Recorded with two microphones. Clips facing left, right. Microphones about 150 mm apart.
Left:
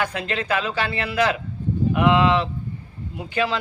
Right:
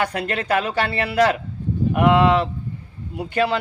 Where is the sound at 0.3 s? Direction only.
50° right (ahead or behind).